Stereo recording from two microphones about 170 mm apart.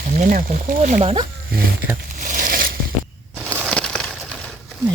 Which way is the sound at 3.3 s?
10° right (ahead or behind).